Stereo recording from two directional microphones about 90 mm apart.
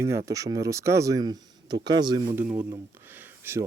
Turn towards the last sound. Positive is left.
turn(degrees=-25)  # may be behind; listen again after turning